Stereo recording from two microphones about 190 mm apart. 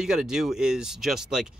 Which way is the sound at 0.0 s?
5° right (ahead or behind).